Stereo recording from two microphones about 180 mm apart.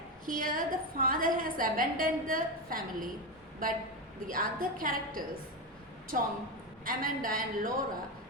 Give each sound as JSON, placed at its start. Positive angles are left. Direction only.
{"t": 0.3, "sound": "a woman's voice", "side_deg": -50}
{"t": 4.3, "sound": "a woman's voice", "side_deg": -50}